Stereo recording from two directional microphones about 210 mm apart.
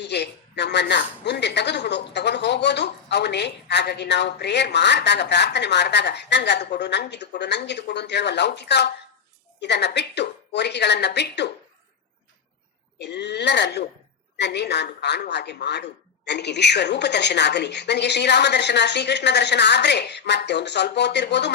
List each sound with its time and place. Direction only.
0.0 s a woman's voice: 55° left (ahead or behind)
13.0 s a woman's voice: 55° left (ahead or behind)